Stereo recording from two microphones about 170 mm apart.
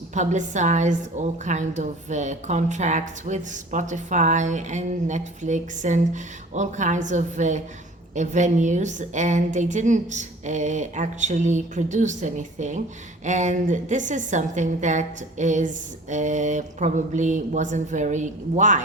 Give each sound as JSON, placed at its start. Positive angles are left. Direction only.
{"t": 0.1, "sound": "a woman's voice", "side_deg": -45}